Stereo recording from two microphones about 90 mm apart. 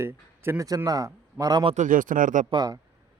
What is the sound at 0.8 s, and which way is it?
A man's voice, 40° right (ahead or behind).